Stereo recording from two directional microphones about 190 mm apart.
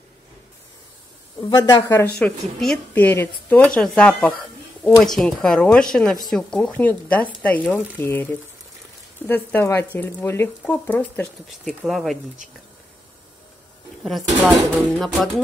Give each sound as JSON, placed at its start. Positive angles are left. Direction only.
{"t": 1.5, "sound": "speech", "side_deg": 20}
{"t": 2.1, "sound": "speech", "side_deg": 5}
{"t": 14.0, "sound": "speech", "side_deg": 0}